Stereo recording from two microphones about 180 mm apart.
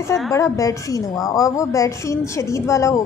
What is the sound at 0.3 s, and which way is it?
A woman's voice, 15° left (ahead or behind).